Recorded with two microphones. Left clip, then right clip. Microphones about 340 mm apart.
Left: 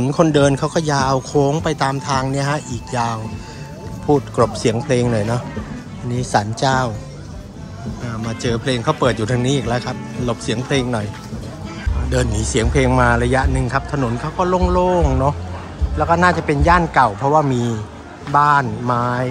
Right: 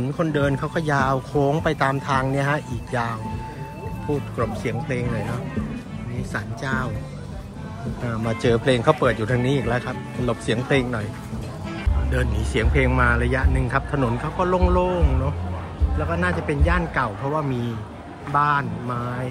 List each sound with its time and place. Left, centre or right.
0.0 s speech: centre
4.4 s speech: centre
6.3 s speech: centre
8.0 s speech: centre
12.1 s speech: centre
16.1 s speech: centre